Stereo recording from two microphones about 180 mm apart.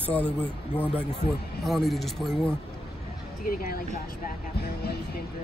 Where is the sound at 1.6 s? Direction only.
Centre (ahead or behind).